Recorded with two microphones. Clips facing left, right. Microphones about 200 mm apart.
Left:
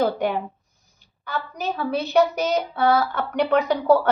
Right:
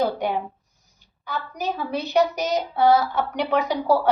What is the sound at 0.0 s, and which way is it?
Speech, 55° left (ahead or behind).